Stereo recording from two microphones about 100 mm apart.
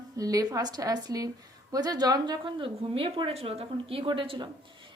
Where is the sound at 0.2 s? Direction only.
35° right (ahead or behind).